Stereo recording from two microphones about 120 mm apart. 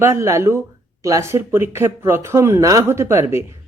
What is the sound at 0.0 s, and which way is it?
A man's voice, 25° right (ahead or behind).